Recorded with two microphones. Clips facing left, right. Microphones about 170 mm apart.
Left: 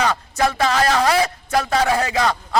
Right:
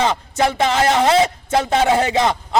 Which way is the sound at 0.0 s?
20° right (ahead or behind).